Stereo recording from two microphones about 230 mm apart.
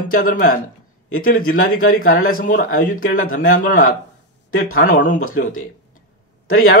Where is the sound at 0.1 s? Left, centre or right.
Left.